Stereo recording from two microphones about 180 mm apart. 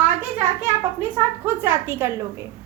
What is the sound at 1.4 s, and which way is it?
Speech, 15° right (ahead or behind).